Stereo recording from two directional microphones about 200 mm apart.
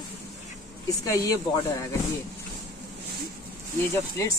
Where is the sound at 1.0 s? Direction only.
15° left (ahead or behind).